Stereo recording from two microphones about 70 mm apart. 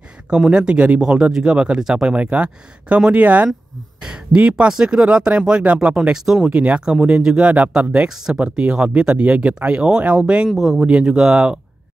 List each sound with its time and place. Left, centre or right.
0.3 s speech: centre
2.1 s speech: centre
6.4 s speech: centre